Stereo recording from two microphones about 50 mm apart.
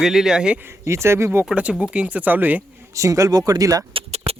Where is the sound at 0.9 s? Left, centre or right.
Right.